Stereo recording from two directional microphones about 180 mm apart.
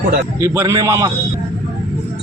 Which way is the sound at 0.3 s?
15° right (ahead or behind).